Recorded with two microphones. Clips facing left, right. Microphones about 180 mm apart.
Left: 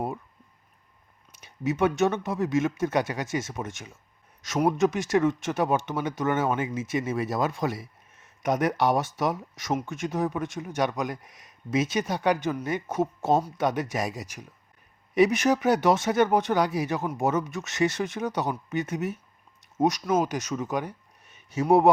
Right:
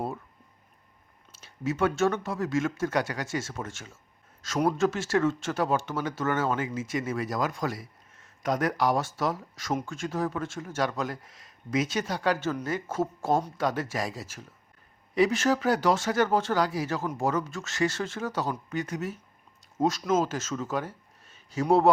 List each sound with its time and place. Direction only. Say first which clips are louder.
1.3 s speech: left 2 dB; 15° left (ahead or behind)